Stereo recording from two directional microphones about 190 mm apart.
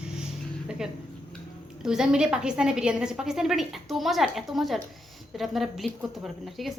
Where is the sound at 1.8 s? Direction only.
5° right (ahead or behind).